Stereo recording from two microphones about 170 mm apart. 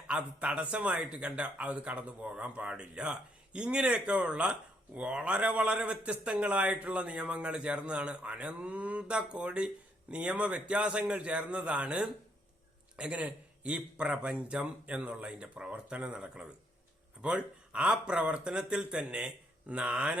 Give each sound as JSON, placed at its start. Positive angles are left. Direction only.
{"t": 0.1, "sound": "a man's voice", "side_deg": -5}